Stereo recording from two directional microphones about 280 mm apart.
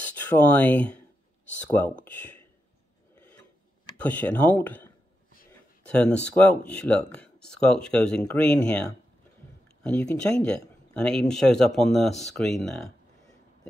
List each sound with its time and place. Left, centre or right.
0.0 s speech: centre
4.0 s speech: centre
9.8 s speech: centre